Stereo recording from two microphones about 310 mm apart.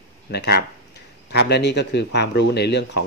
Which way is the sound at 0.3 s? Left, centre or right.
Left.